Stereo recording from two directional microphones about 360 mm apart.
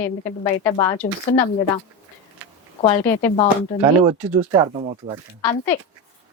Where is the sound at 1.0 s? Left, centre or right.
Left.